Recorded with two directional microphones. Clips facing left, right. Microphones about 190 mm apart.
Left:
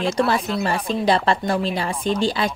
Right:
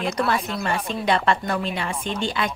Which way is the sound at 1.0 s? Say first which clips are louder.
Left 2 dB; 35° left (ahead or behind).